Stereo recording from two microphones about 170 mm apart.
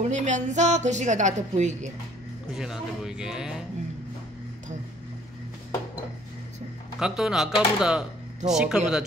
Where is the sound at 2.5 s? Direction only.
Centre (ahead or behind).